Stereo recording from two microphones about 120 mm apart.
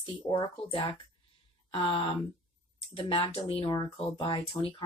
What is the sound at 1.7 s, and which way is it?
A woman's voice, 50° left (ahead or behind).